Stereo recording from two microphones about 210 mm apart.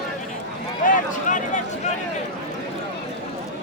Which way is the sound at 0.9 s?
40° left (ahead or behind).